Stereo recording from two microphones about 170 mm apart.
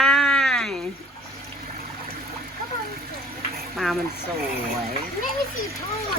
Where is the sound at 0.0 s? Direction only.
Centre (ahead or behind).